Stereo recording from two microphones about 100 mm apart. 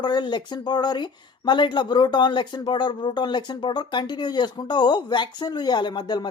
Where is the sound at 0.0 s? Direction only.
50° left (ahead or behind).